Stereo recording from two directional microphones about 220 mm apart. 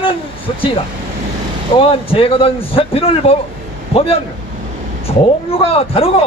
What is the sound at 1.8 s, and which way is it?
Speech, 25° left (ahead or behind).